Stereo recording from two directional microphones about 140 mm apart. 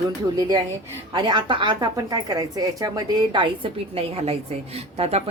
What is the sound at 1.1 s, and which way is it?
A woman's voice, 35° right (ahead or behind).